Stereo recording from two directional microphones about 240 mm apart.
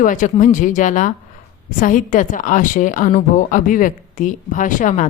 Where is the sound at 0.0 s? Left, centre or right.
Left.